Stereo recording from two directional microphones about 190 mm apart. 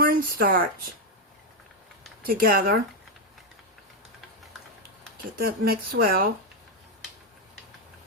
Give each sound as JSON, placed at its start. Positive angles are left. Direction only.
{"t": 0.0, "sound": "speech", "side_deg": -50}
{"t": 2.2, "sound": "speech", "side_deg": -50}
{"t": 5.1, "sound": "speech", "side_deg": -55}